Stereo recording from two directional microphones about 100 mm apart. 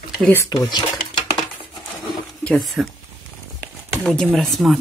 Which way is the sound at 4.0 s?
5° left (ahead or behind).